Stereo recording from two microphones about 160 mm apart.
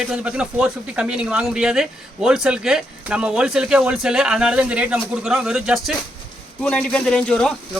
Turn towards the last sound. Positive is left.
turn(degrees=5)  # may be behind; listen again after turning